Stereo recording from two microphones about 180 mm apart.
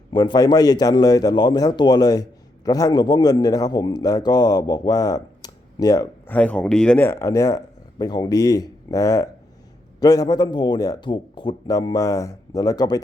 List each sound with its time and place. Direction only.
0.1 s a man's voice: 25° left (ahead or behind)
6.3 s a man's voice: 5° left (ahead or behind)